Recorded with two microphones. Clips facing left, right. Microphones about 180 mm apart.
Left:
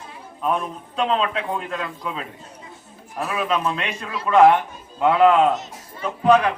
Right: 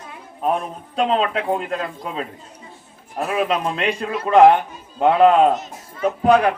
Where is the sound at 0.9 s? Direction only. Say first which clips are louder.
Right 3 dB; 35° right (ahead or behind).